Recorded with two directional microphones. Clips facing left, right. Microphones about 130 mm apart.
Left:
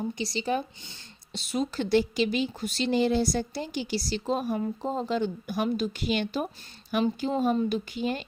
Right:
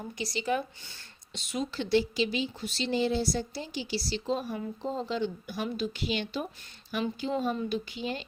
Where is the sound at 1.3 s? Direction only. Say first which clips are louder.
Left 4 dB; 35° left (ahead or behind).